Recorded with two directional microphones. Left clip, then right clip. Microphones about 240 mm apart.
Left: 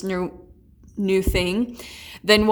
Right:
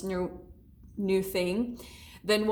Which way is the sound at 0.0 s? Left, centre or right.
Left.